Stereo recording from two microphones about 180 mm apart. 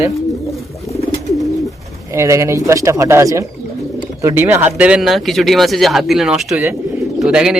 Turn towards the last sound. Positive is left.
turn(degrees=-5)  # may be behind; listen again after turning